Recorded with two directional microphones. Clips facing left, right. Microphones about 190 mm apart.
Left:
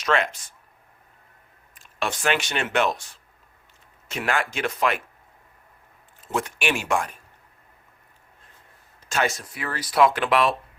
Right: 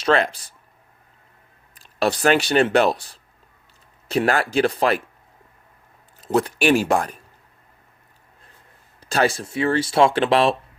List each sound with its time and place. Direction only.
0.0 s speech: 35° right (ahead or behind)
1.7 s speech: 35° right (ahead or behind)
6.2 s speech: 35° right (ahead or behind)
9.0 s speech: 35° right (ahead or behind)